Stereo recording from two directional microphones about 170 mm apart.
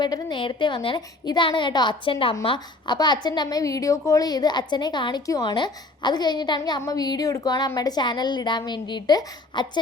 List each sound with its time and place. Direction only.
0.0 s a woman's voice: 25° left (ahead or behind)